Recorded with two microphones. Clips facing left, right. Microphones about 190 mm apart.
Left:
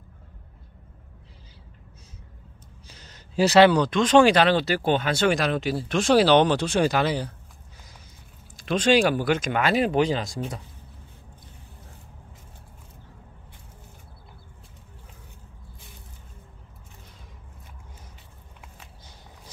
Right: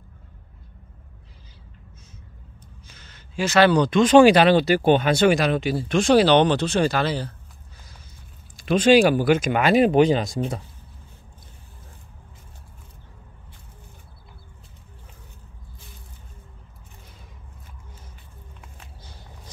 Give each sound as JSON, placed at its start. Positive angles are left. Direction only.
{"t": 2.9, "sound": "a sound", "side_deg": 35}
{"t": 3.7, "sound": "speech", "side_deg": 0}
{"t": 5.3, "sound": "speech", "side_deg": 0}
{"t": 8.6, "sound": "speech", "side_deg": -5}